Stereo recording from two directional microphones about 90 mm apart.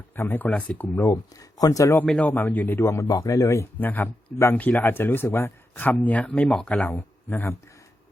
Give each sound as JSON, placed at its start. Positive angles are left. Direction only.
{"t": 0.2, "sound": "speech", "side_deg": 20}
{"t": 1.1, "sound": "speech", "side_deg": 45}
{"t": 2.0, "sound": "a man's voice", "side_deg": 10}
{"t": 2.8, "sound": "speech", "side_deg": 35}
{"t": 3.8, "sound": "speech", "side_deg": 20}